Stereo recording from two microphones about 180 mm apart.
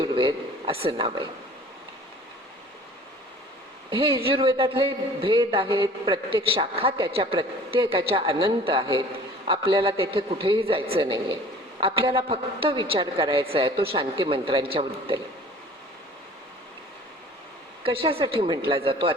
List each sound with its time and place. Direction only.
0.0 s a sound: 25° right (ahead or behind)
3.8 s a man's voice: 30° right (ahead or behind)
17.8 s a man's voice: 30° right (ahead or behind)